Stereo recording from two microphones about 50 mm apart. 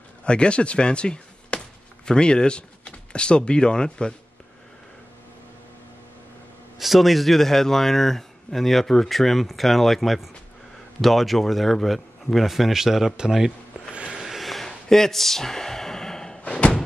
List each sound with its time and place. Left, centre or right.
0.2 s speech: left
6.8 s speech: centre
14.1 s a sound: centre
16.4 s slam: left